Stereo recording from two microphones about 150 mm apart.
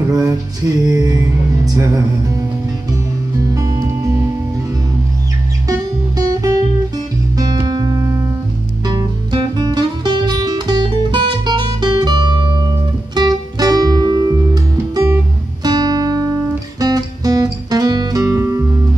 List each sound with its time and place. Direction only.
0.1 s music: 25° right (ahead or behind)
3.5 s music: 25° right (ahead or behind)
5.7 s music: 25° right (ahead or behind)
15.6 s guitar: 30° right (ahead or behind)
16.8 s music: 25° right (ahead or behind)